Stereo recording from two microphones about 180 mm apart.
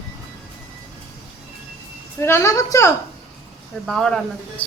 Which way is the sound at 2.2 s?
15° left (ahead or behind).